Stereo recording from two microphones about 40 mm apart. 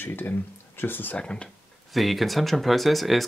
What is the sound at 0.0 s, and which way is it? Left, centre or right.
Speech, left.